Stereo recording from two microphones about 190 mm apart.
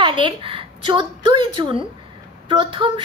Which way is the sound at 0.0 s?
25° right (ahead or behind).